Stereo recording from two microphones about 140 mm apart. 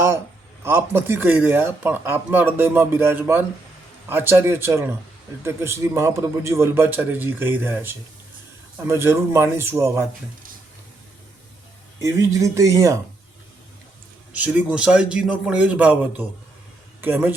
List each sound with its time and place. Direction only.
0.6 s a man's voice: 20° right (ahead or behind)
11.9 s speech: 20° right (ahead or behind)
14.3 s a man's voice: 10° right (ahead or behind)